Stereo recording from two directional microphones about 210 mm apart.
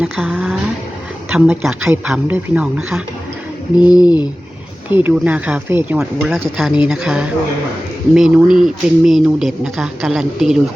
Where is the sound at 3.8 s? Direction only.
20° left (ahead or behind).